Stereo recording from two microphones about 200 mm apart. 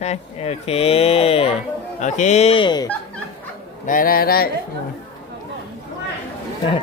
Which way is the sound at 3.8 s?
45° left (ahead or behind).